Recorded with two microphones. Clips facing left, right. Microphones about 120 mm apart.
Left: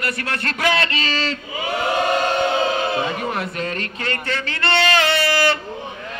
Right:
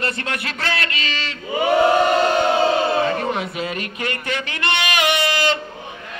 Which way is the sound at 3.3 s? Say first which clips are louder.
Even; 5° right (ahead or behind).